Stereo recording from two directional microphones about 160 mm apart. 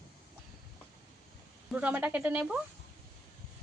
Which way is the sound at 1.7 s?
10° right (ahead or behind).